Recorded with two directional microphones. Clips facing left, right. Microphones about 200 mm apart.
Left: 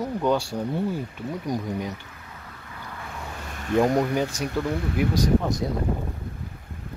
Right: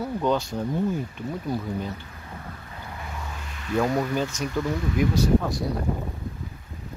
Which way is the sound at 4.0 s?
15° left (ahead or behind).